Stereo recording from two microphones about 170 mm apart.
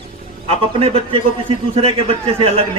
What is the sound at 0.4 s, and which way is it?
A man's voice, 35° right (ahead or behind).